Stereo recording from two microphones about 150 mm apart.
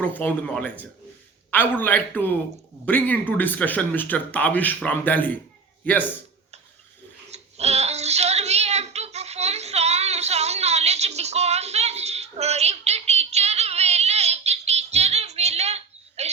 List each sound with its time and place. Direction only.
0.0 s speech: 10° left (ahead or behind)
7.3 s child singing: 45° right (ahead or behind)